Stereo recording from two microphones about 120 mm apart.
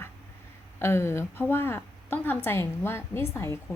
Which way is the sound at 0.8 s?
20° left (ahead or behind).